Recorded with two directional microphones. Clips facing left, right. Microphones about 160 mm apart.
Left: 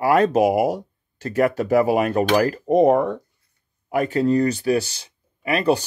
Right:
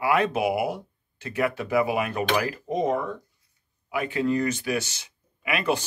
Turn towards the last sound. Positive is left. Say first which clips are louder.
# left 6 dB
turn(degrees=35)  # may be behind; listen again after turning